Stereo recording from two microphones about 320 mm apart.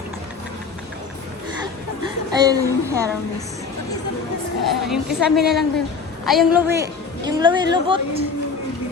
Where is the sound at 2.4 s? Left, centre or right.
Centre.